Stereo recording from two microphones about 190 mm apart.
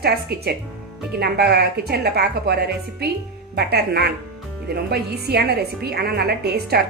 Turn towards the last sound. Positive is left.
turn(degrees=-60)  # may be behind; listen again after turning